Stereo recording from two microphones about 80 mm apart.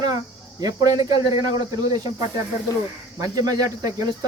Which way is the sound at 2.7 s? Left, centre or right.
Left.